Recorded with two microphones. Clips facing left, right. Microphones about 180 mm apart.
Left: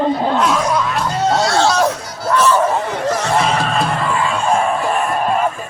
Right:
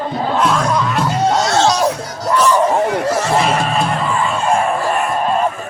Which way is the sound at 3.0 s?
5° right (ahead or behind).